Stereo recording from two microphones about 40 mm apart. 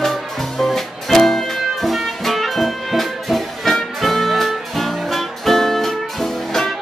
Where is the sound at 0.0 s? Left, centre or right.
Centre.